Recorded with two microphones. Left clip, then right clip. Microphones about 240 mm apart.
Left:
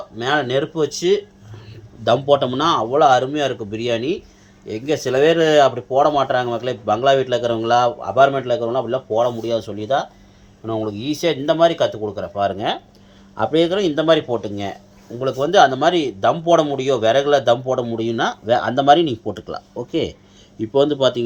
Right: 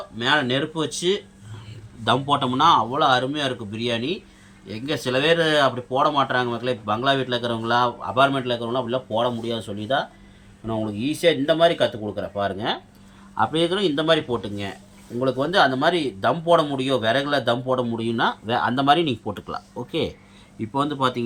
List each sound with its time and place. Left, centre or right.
0.2 s speech: centre
19.9 s speech: left